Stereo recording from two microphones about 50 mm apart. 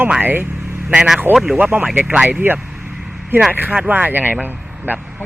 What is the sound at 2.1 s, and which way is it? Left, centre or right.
Speech, centre.